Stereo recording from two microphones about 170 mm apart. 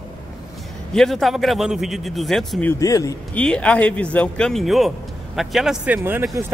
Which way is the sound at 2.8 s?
20° left (ahead or behind).